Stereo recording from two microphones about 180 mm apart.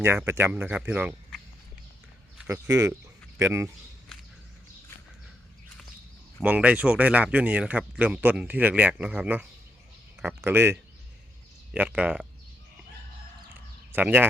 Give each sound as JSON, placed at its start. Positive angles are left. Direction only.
{"t": 0.0, "sound": "speech", "side_deg": -15}
{"t": 2.5, "sound": "speech", "side_deg": -15}
{"t": 6.4, "sound": "speech", "side_deg": -10}
{"t": 13.9, "sound": "speech", "side_deg": -10}